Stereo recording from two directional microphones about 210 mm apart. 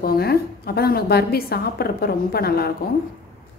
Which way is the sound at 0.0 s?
45° left (ahead or behind).